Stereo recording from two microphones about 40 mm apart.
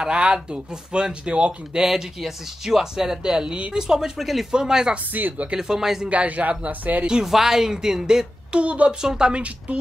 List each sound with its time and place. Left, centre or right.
0.0 s speech: right
1.8 s speech: centre
4.2 s speech: centre
4.5 s speech: centre
5.1 s speech: right
5.6 s speech: centre
6.0 s a man's voice: right
7.2 s speech: centre
8.5 s speech: right
9.0 s speech: right